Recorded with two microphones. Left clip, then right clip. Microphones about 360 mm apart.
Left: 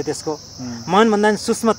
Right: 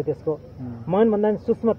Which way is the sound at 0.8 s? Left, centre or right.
Left.